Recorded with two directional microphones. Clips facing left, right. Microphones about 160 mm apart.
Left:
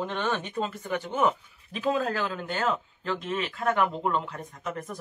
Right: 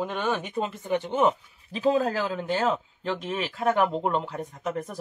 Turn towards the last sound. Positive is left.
turn(degrees=-30)  # may be behind; listen again after turning